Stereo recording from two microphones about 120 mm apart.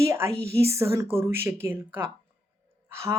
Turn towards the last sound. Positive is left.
turn(degrees=-25)  # may be behind; listen again after turning